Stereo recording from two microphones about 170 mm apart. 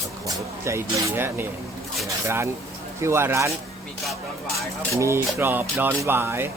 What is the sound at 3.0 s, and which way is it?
Speech, 15° right (ahead or behind).